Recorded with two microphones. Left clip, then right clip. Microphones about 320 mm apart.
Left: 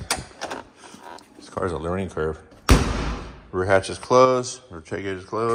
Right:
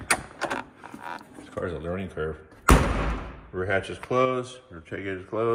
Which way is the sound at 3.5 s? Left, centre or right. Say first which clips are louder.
Left 7 dB; centre.